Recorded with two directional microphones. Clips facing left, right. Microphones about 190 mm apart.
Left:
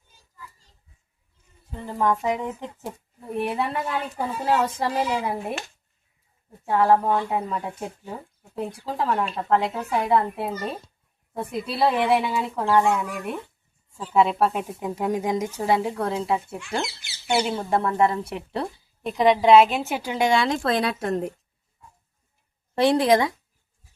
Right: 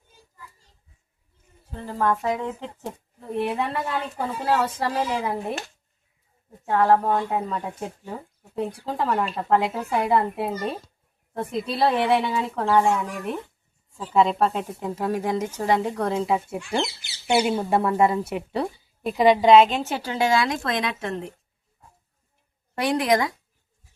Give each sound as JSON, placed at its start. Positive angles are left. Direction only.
{"t": 1.7, "sound": "speech", "side_deg": 15}
{"t": 6.7, "sound": "a woman's voice", "side_deg": 10}
{"t": 14.1, "sound": "a woman's voice", "side_deg": 5}
{"t": 20.5, "sound": "speech", "side_deg": 30}
{"t": 22.8, "sound": "speech", "side_deg": 30}